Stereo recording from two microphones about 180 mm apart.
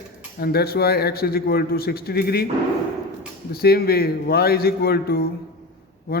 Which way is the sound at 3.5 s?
60° left (ahead or behind).